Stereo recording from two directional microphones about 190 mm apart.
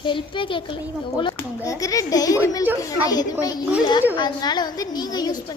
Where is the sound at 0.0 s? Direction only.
25° left (ahead or behind).